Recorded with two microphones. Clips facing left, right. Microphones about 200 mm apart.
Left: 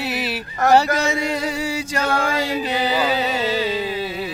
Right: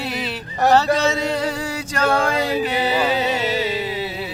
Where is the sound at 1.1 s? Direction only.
10° left (ahead or behind).